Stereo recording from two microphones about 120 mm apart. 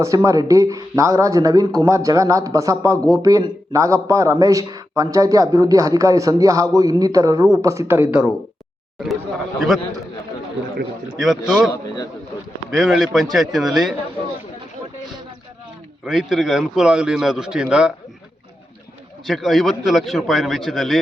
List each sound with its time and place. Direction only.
0.0 s speech: 25° right (ahead or behind)
9.6 s a man's voice: centre (ahead or behind)
11.2 s a man's voice: centre (ahead or behind)
12.7 s a man's voice: 5° right (ahead or behind)
16.0 s a man's voice: centre (ahead or behind)
19.2 s a man's voice: centre (ahead or behind)